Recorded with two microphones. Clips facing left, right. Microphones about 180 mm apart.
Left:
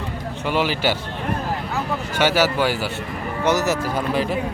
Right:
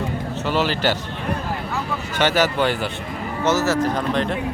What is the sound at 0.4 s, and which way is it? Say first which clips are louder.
Speech: even; 10° left (ahead or behind).